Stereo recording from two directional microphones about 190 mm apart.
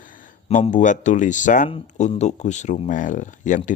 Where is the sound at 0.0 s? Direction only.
45° left (ahead or behind).